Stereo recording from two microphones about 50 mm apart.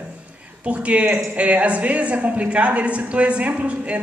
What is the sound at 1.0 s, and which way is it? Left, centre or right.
Speech, right.